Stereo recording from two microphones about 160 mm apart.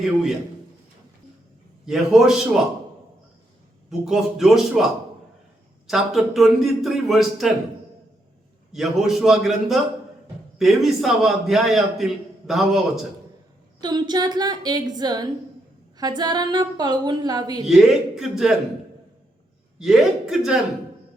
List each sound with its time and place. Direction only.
1.9 s a man's voice: centre (ahead or behind)
3.8 s a man's voice: centre (ahead or behind)
5.9 s a man's voice: centre (ahead or behind)
8.7 s a man's voice: centre (ahead or behind)
13.8 s a woman's voice: 25° right (ahead or behind)
17.7 s a man's voice: centre (ahead or behind)
19.8 s a man's voice: 5° right (ahead or behind)